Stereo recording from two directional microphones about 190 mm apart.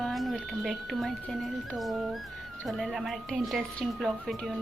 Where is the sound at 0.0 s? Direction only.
Centre (ahead or behind).